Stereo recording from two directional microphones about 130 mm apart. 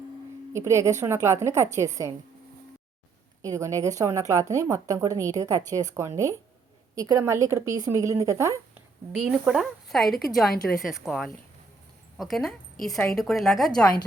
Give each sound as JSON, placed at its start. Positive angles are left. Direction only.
{"t": 0.5, "sound": "a woman's voice", "side_deg": -20}
{"t": 3.4, "sound": "a woman's voice", "side_deg": -25}
{"t": 9.1, "sound": "a woman's voice", "side_deg": -5}